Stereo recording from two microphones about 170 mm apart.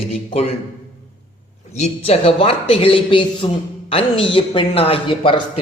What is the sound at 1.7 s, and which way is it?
A man's voice, 40° left (ahead or behind).